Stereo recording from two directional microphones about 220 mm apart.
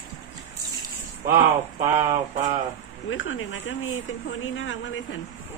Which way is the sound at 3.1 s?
60° left (ahead or behind).